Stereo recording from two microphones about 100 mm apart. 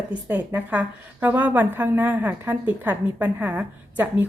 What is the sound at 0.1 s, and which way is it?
A woman's voice, 20° right (ahead or behind).